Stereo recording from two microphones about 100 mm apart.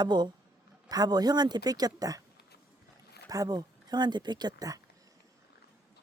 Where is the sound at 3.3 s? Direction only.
40° right (ahead or behind).